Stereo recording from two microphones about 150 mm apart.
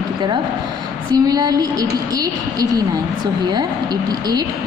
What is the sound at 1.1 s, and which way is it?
A woman's voice, 25° right (ahead or behind).